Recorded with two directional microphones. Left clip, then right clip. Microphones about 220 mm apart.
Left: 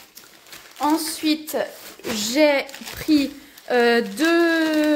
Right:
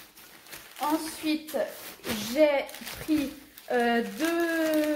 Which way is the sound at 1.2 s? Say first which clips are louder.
Left 6 dB; 55° left (ahead or behind).